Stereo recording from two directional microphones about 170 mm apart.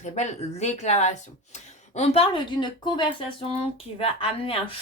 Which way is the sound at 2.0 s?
30° left (ahead or behind).